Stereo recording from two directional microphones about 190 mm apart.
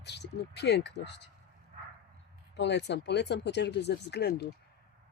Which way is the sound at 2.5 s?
65° left (ahead or behind).